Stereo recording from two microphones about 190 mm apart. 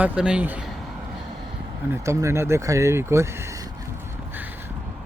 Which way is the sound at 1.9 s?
15° right (ahead or behind).